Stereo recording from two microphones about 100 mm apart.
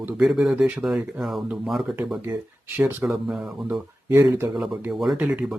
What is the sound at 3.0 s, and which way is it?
Speech, 20° right (ahead or behind).